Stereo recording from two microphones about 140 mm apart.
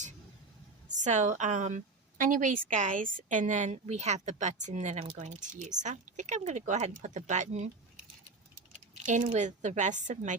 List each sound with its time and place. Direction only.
0.9 s a woman's voice: 60° right (ahead or behind)
9.2 s a woman's voice: 50° right (ahead or behind)